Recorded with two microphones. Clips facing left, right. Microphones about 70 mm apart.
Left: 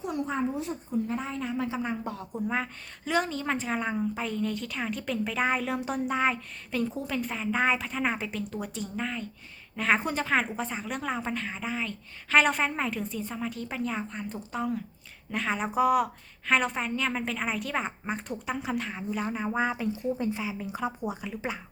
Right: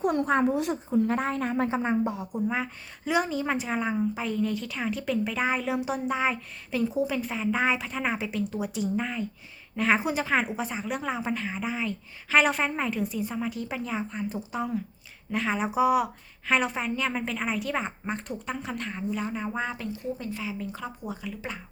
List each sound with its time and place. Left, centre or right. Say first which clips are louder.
0.0 s a woman's voice: right 6 dB; right
2.1 s a woman's voice: right 2 dB; centre
19.9 s speech: left 4 dB; left